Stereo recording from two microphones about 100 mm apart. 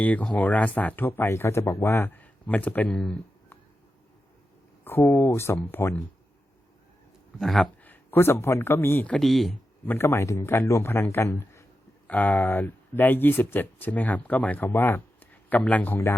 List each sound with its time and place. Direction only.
0.0 s speech: 15° left (ahead or behind)
4.8 s a man's voice: 25° left (ahead or behind)
7.3 s speech: centre (ahead or behind)
7.9 s a man's voice: 25° left (ahead or behind)
9.1 s speech: centre (ahead or behind)
9.8 s a man's voice: 20° left (ahead or behind)
12.0 s speech: 15° left (ahead or behind)